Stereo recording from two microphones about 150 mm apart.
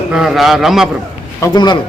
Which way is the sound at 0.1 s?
Centre (ahead or behind).